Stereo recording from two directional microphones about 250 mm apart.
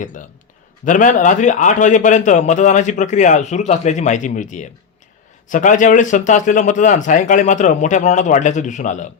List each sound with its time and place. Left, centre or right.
0.0 s a man's voice: left